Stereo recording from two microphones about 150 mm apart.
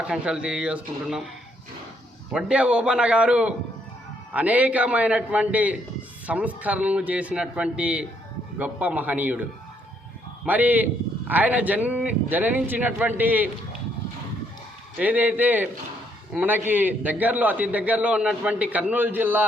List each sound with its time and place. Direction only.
0.1 s speech: 5° right (ahead or behind)
2.3 s a man's voice: 5° right (ahead or behind)
14.9 s a man's voice: 10° right (ahead or behind)